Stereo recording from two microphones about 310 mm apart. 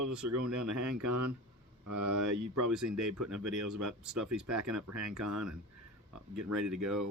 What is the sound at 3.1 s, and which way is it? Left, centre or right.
Speech, right.